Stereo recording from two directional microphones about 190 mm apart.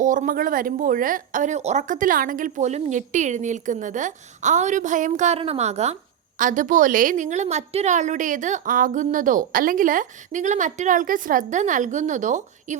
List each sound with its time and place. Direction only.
0.0 s a woman's voice: 40° right (ahead or behind)